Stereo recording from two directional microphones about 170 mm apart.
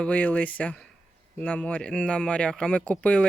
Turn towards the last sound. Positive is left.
turn(degrees=5)  # may be behind; listen again after turning